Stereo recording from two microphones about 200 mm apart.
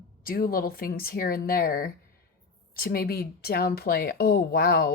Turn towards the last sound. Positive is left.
turn(degrees=50)  # may be behind; listen again after turning